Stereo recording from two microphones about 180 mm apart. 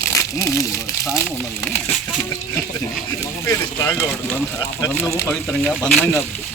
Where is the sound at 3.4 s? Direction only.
15° left (ahead or behind).